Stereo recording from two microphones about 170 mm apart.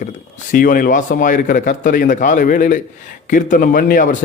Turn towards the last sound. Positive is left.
turn(degrees=50)  # may be behind; listen again after turning